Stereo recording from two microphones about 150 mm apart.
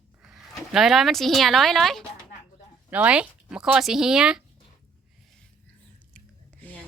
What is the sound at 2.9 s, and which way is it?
Speech, 10° right (ahead or behind).